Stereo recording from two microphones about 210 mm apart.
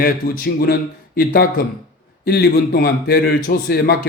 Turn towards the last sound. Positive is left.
turn(degrees=50)  # may be behind; listen again after turning